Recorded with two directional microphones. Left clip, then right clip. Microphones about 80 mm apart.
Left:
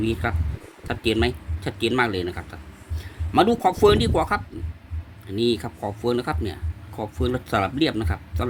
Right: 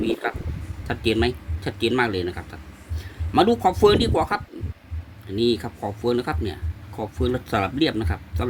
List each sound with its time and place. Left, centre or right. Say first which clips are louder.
0.0 s speech: right 1 dB; left